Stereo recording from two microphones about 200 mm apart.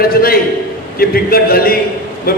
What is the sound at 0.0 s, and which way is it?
A man's voice, 50° left (ahead or behind).